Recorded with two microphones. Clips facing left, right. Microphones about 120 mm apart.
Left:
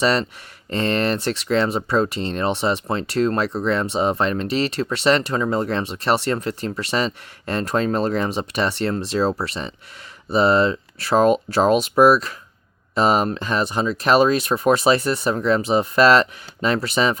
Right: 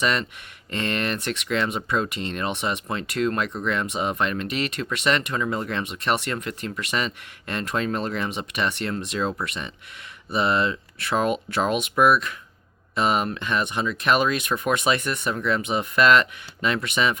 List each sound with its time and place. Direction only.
0.0 s speech: 35° left (ahead or behind)